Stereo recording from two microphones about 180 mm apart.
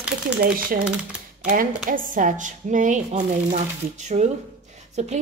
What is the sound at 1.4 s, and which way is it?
A woman's voice, 50° right (ahead or behind).